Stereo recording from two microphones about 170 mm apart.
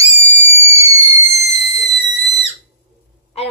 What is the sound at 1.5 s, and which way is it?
Whistle, 40° left (ahead or behind).